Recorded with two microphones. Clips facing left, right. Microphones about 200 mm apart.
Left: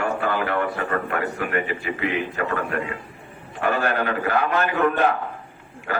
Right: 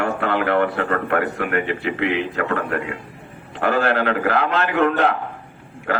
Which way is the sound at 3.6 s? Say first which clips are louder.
Right 4 dB; 65° right (ahead or behind).